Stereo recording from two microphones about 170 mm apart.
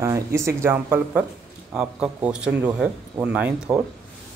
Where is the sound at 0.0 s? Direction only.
15° right (ahead or behind).